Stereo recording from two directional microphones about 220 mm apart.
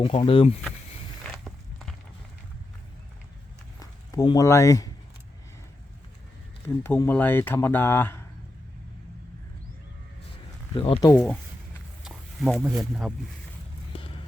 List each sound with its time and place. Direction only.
0.0 s speech: 25° left (ahead or behind)
1.2 s walk: centre (ahead or behind)
3.8 s speech: 15° left (ahead or behind)
6.8 s speech: 10° left (ahead or behind)
10.8 s speech: 25° left (ahead or behind)
12.0 s a sound: centre (ahead or behind)
12.8 s speech: centre (ahead or behind)